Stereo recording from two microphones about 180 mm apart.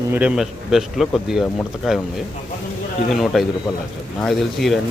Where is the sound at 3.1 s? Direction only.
Centre (ahead or behind).